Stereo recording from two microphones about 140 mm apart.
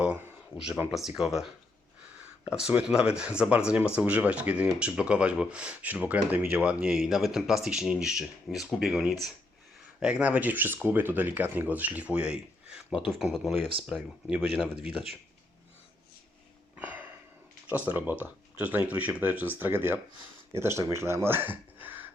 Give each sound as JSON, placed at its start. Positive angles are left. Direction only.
{"t": 0.9, "sound": "speech", "side_deg": 0}
{"t": 16.7, "sound": "a sound", "side_deg": -10}
{"t": 17.7, "sound": "speech", "side_deg": -10}